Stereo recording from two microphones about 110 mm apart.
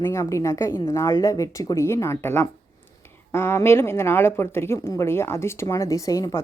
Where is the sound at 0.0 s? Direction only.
25° left (ahead or behind).